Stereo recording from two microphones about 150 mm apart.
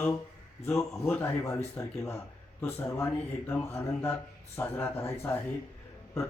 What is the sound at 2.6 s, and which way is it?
Speech, 15° left (ahead or behind).